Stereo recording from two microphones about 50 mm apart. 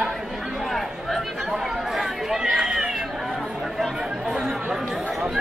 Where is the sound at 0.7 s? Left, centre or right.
Centre.